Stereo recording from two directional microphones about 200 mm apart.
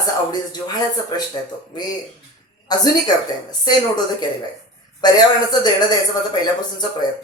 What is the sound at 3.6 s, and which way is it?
A man's voice, 20° left (ahead or behind).